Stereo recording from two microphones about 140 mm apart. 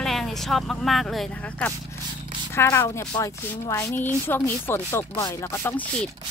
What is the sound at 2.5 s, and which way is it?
A woman's voice, 20° left (ahead or behind).